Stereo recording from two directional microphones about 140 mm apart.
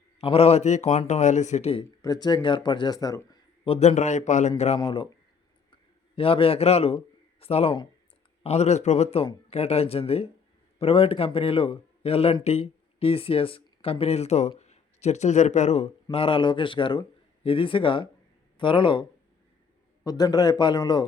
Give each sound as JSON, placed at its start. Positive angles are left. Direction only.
{"t": 0.2, "sound": "a man's voice", "side_deg": 45}
{"t": 2.0, "sound": "speech", "side_deg": 30}
{"t": 3.7, "sound": "a man's voice", "side_deg": 55}
{"t": 4.8, "sound": "speech", "side_deg": 35}
{"t": 6.1, "sound": "a man's voice", "side_deg": 40}
{"t": 16.1, "sound": "speech", "side_deg": 40}
{"t": 20.1, "sound": "speech", "side_deg": 30}